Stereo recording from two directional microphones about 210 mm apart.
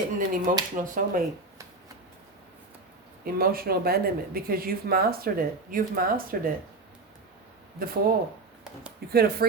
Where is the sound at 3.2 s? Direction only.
45° right (ahead or behind).